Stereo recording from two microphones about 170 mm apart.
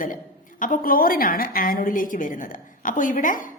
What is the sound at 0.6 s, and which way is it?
A woman's voice, 55° left (ahead or behind).